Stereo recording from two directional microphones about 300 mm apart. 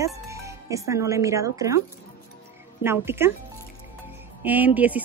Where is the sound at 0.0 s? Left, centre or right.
Centre.